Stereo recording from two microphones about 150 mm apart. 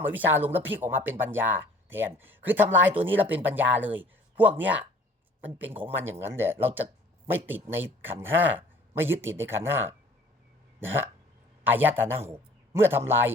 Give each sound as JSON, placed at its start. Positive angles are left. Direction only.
{"t": 0.0, "sound": "a man's voice", "side_deg": -15}